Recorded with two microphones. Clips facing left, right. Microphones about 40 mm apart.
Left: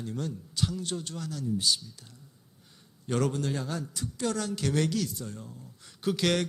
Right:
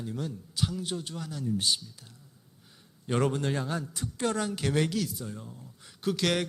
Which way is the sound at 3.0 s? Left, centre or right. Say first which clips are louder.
Right 1 dB; right.